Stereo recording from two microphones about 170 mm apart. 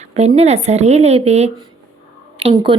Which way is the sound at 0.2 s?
40° right (ahead or behind).